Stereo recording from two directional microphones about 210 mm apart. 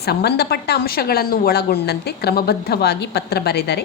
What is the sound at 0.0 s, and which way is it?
A woman's voice, 50° left (ahead or behind).